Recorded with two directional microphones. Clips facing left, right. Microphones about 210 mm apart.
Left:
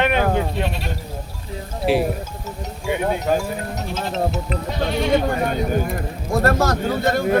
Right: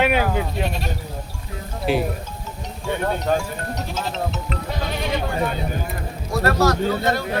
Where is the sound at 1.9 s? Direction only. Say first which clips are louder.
Left 3 dB; centre (ahead or behind).